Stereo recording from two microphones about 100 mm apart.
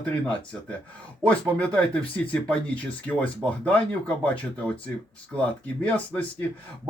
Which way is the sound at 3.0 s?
15° left (ahead or behind).